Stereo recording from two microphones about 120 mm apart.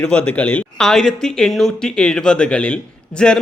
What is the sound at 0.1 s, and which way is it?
Speech, 10° left (ahead or behind).